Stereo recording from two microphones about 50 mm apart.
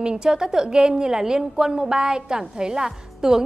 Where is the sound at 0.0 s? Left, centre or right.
Centre.